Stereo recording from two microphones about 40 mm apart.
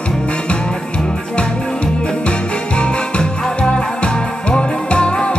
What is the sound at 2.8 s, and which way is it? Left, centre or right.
Music, left.